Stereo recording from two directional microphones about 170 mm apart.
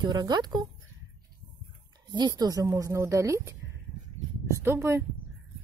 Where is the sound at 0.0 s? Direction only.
25° right (ahead or behind).